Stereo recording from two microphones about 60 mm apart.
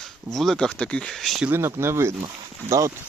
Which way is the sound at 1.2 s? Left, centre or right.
Centre.